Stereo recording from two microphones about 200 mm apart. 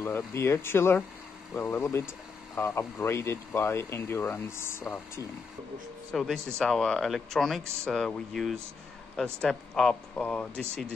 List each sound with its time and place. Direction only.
0.0 s speech: 15° left (ahead or behind)
6.1 s speech: centre (ahead or behind)